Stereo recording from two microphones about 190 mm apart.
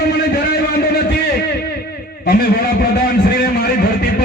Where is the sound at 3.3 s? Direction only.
55° left (ahead or behind).